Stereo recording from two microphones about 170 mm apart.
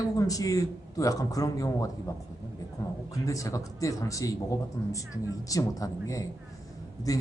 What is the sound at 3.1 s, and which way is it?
A man's voice, 20° left (ahead or behind).